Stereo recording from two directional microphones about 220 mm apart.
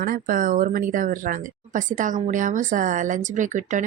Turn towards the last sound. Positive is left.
turn(degrees=-35)  # may be behind; listen again after turning